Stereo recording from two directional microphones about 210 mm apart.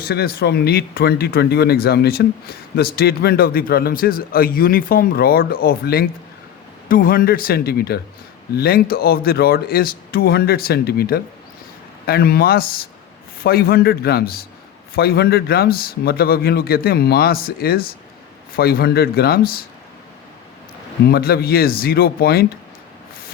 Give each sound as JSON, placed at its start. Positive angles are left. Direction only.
{"t": 0.0, "sound": "speech", "side_deg": 50}
{"t": 21.1, "sound": "speech", "side_deg": 50}